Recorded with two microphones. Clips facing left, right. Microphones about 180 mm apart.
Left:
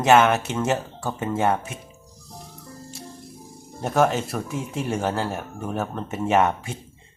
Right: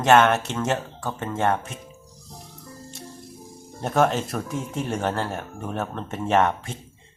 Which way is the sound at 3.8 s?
Centre (ahead or behind).